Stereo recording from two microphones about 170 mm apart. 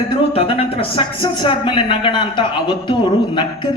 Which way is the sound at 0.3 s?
35° left (ahead or behind).